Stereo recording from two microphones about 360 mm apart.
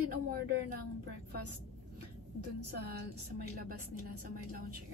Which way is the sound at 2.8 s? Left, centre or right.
Right.